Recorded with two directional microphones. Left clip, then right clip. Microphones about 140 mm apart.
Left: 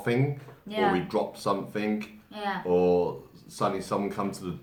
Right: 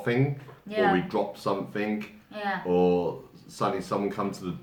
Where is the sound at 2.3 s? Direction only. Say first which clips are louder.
Right 1 dB; 15° right (ahead or behind).